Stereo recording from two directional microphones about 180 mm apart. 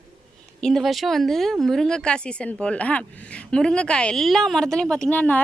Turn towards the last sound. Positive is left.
turn(degrees=10)  # may be behind; listen again after turning